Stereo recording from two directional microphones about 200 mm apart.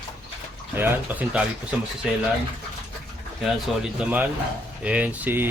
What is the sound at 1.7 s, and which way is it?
Speech, 5° right (ahead or behind).